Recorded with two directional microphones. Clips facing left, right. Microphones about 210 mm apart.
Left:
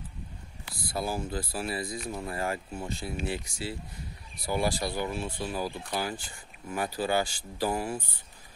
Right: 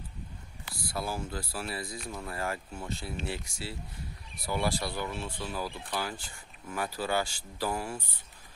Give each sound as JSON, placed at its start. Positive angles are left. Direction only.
{"t": 0.9, "sound": "speech", "side_deg": 15}